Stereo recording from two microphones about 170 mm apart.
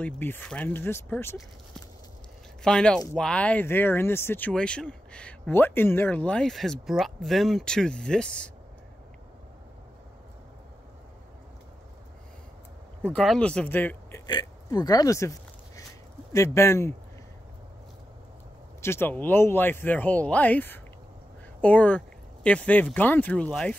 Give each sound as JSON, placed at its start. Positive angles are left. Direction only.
{"t": 0.0, "sound": "speech", "side_deg": 10}
{"t": 2.6, "sound": "speech", "side_deg": 5}
{"t": 13.0, "sound": "speech", "side_deg": 5}
{"t": 14.2, "sound": "a sound", "side_deg": 25}
{"t": 16.3, "sound": "speech", "side_deg": 15}
{"t": 18.8, "sound": "speech", "side_deg": 15}